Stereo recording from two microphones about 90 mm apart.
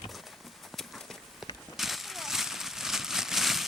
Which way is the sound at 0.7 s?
5° left (ahead or behind).